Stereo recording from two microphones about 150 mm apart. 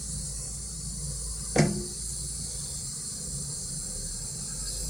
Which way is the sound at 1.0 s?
Centre (ahead or behind).